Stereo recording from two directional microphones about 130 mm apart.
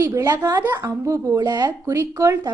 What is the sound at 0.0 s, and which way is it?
A woman's voice, 25° right (ahead or behind).